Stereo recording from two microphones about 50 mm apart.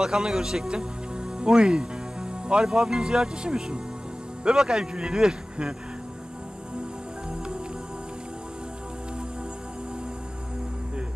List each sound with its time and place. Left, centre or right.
0.0 s speech: centre